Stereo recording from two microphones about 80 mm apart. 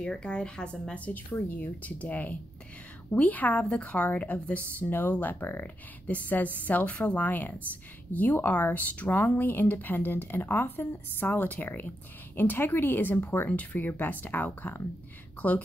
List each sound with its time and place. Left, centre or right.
0.0 s a woman's voice: centre